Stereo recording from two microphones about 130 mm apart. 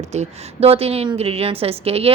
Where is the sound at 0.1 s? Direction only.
55° right (ahead or behind).